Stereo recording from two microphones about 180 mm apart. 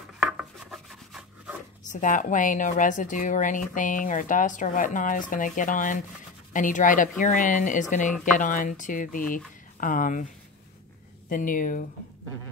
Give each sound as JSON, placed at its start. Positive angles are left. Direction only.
{"t": 0.4, "sound": "rub", "side_deg": 0}
{"t": 1.9, "sound": "a woman's voice", "side_deg": 45}
{"t": 11.2, "sound": "a woman's voice", "side_deg": 50}